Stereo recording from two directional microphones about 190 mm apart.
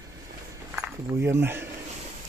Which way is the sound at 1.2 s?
10° right (ahead or behind).